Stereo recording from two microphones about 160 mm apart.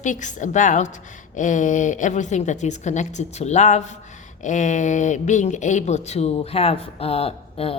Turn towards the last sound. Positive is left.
turn(degrees=35)  # may be behind; listen again after turning